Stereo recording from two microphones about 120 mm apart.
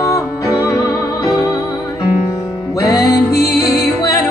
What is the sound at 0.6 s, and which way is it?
Music, 25° left (ahead or behind).